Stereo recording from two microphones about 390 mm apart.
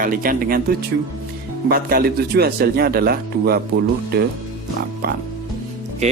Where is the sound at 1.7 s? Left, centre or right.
Right.